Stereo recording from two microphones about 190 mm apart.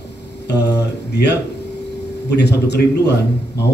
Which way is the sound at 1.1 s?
60° left (ahead or behind).